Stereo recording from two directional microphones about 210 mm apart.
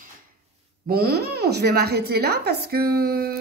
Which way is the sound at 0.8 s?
45° right (ahead or behind).